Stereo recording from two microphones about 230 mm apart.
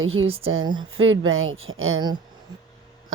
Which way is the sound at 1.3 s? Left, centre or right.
Right.